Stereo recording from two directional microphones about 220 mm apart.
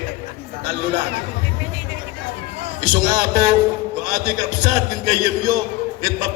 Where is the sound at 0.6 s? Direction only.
50° right (ahead or behind).